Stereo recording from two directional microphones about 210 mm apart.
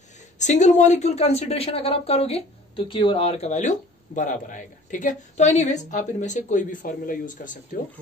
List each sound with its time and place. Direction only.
0.4 s a woman's voice: 35° left (ahead or behind)